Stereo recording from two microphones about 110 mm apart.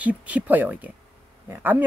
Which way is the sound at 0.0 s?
10° right (ahead or behind).